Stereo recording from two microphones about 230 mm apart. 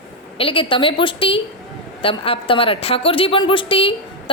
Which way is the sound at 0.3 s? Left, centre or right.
Left.